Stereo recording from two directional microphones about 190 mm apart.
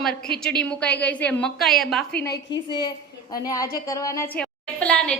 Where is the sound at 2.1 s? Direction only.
55° left (ahead or behind).